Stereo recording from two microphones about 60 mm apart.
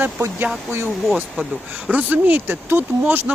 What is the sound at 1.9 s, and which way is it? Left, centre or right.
Speech, right.